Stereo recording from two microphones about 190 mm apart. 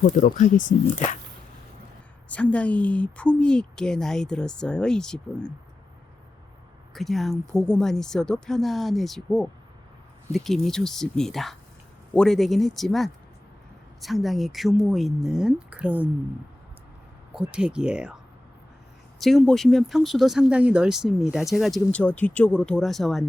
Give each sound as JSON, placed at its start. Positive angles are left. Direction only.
{"t": 0.2, "sound": "speech", "side_deg": 40}
{"t": 2.3, "sound": "speech", "side_deg": 5}
{"t": 6.9, "sound": "speech", "side_deg": 0}
{"t": 17.3, "sound": "speech", "side_deg": -5}
{"t": 19.2, "sound": "speech", "side_deg": 0}